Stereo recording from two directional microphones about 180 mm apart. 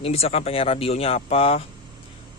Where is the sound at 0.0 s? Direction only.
35° left (ahead or behind).